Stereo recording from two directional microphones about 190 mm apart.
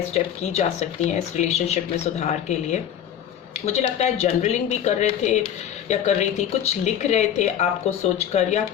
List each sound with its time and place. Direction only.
0.1 s speech: 35° left (ahead or behind)